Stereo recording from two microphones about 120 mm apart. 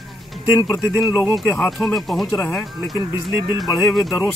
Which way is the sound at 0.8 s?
5° right (ahead or behind).